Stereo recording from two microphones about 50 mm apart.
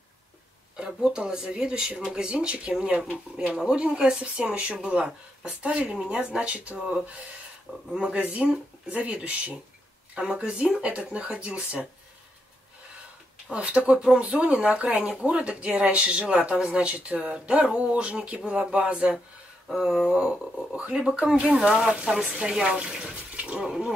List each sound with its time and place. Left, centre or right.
0.7 s speech: centre
13.5 s speech: right
19.7 s speech: centre
21.2 s speech: right
21.6 s speech: centre
23.3 s a sound: right